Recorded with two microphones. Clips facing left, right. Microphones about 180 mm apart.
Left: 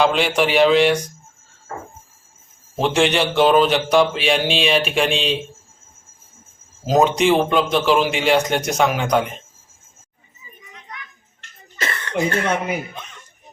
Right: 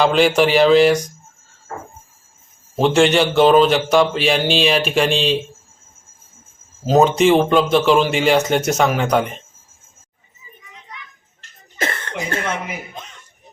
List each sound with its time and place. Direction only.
0.0 s a man's voice: centre (ahead or behind)
2.7 s a man's voice: centre (ahead or behind)
6.8 s a man's voice: centre (ahead or behind)
11.8 s cough: 50° right (ahead or behind)